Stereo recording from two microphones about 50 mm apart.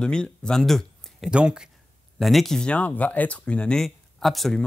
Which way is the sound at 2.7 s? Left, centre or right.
Left.